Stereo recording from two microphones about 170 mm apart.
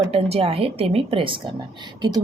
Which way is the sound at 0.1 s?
35° right (ahead or behind).